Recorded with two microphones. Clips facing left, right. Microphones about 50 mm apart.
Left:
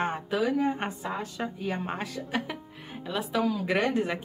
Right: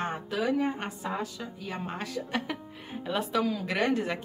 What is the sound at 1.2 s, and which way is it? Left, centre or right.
Speech, left.